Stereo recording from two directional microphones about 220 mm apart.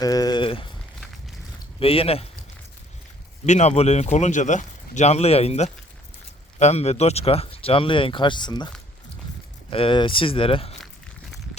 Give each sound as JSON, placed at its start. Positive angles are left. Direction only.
{"t": 0.0, "sound": "a sound", "side_deg": 15}
{"t": 1.8, "sound": "speech", "side_deg": 25}
{"t": 3.4, "sound": "speech", "side_deg": 30}